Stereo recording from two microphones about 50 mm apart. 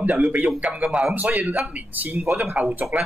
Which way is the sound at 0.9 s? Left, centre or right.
Centre.